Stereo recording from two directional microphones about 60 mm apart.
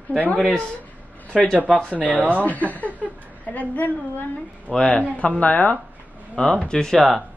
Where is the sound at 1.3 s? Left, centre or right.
Centre.